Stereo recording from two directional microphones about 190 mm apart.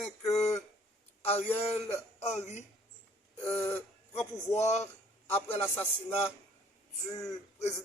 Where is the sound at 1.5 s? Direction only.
10° left (ahead or behind).